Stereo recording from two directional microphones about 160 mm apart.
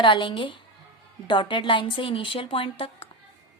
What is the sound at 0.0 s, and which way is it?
A woman's voice, 30° left (ahead or behind).